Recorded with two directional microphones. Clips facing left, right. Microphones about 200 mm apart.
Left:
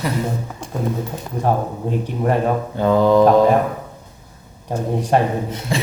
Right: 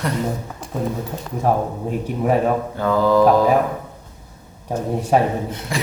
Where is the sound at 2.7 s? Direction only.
20° left (ahead or behind).